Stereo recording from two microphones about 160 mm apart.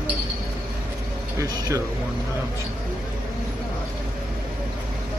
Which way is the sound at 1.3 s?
20° right (ahead or behind).